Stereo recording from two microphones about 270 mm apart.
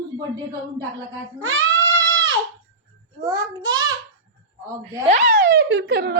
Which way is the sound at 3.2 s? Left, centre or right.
Centre.